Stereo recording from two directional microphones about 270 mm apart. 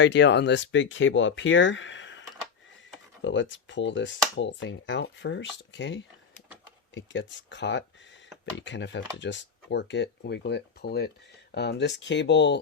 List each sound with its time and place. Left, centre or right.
0.0 s speech: left